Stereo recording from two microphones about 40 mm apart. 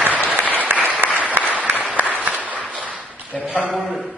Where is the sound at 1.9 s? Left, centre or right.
Right.